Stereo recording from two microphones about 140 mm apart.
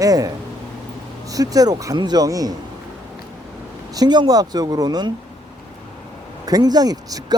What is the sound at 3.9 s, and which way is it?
Speech, 30° right (ahead or behind).